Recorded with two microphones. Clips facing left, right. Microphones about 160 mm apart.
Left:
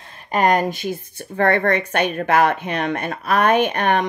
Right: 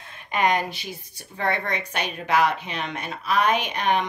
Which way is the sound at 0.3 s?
45° left (ahead or behind).